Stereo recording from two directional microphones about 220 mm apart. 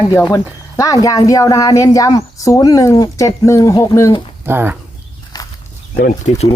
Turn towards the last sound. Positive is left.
turn(degrees=30)  # may be behind; listen again after turning